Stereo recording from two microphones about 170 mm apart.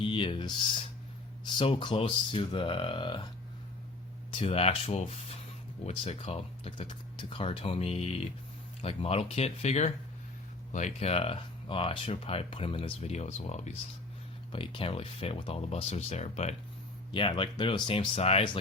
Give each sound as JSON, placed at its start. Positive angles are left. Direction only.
{"t": 0.0, "sound": "speech", "side_deg": 30}
{"t": 4.3, "sound": "speech", "side_deg": 30}
{"t": 14.5, "sound": "speech", "side_deg": 30}
{"t": 17.1, "sound": "speech", "side_deg": 30}